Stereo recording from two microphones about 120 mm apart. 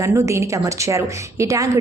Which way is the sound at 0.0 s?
25° right (ahead or behind).